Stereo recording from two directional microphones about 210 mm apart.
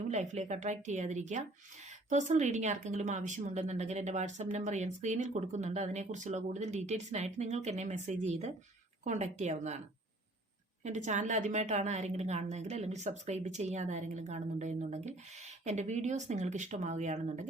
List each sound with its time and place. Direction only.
0.1 s speech: 35° right (ahead or behind)
10.8 s speech: 35° right (ahead or behind)